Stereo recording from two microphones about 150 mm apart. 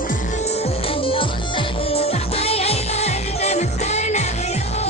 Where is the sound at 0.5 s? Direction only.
40° left (ahead or behind).